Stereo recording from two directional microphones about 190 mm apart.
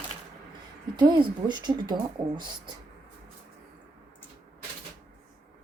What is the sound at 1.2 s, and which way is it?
Speech, 25° right (ahead or behind).